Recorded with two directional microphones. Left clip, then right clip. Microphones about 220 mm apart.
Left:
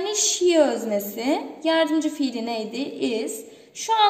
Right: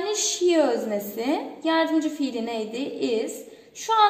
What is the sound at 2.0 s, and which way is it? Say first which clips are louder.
A woman's voice: left 2 dB; 35° left (ahead or behind).